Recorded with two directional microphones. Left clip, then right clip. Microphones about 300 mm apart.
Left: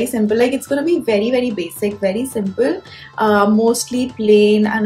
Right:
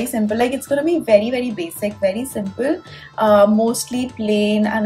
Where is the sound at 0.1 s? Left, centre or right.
Centre.